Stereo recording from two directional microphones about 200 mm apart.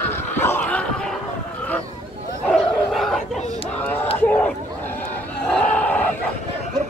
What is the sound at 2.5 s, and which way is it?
Bow-wow, centre (ahead or behind).